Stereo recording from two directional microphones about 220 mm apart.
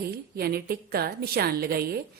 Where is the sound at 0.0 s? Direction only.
45° right (ahead or behind).